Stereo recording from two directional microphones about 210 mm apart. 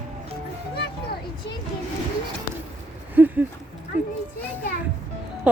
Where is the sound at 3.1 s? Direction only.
10° right (ahead or behind).